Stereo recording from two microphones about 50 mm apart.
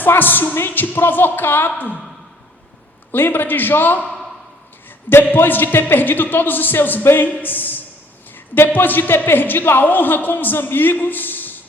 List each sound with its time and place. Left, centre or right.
0.0 s speech: left
3.1 s a man's voice: left
5.0 s a man's voice: left
7.3 s speech: left